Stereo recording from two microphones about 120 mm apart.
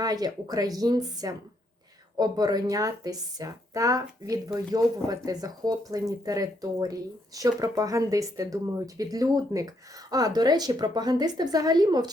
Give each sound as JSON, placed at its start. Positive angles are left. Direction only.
{"t": 0.0, "sound": "speech", "side_deg": -35}